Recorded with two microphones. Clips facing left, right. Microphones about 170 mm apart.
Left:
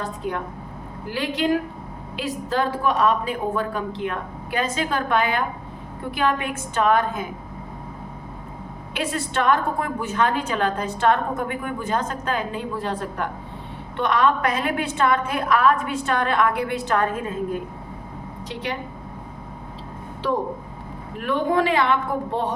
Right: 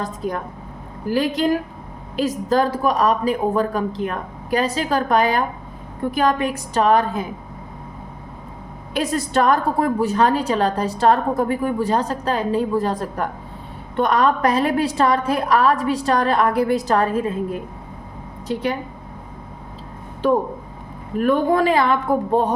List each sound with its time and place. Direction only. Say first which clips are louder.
0.0 s a woman's voice: right 2 dB; 40° right (ahead or behind)
9.0 s a woman's voice: right 5 dB; 40° right (ahead or behind)
18.4 s speech: right 7 dB; 45° right (ahead or behind)
21.2 s speech: right 4 dB; 45° right (ahead or behind)